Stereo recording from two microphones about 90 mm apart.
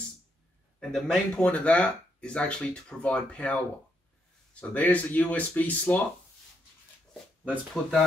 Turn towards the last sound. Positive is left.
turn(degrees=5)  # may be behind; listen again after turning